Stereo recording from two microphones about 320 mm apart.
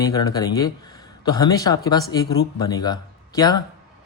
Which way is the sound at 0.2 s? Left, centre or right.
Centre.